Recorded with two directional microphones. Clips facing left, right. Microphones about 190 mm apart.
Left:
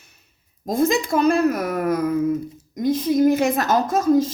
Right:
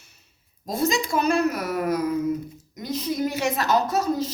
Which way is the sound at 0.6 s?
55° left (ahead or behind).